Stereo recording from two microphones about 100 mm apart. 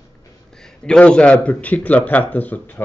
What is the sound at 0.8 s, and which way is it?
Speech, 10° left (ahead or behind).